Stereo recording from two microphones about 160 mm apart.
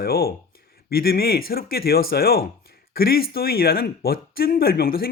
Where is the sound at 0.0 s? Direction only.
70° left (ahead or behind).